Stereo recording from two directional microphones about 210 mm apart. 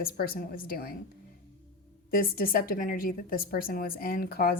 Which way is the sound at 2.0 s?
45° left (ahead or behind).